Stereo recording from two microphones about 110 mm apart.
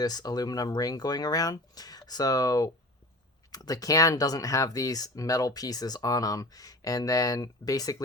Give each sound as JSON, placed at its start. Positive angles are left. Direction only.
{"t": 0.0, "sound": "speech", "side_deg": 35}